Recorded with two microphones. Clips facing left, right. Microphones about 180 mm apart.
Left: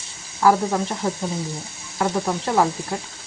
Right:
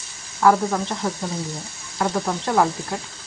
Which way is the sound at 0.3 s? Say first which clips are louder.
Even; 10° left (ahead or behind).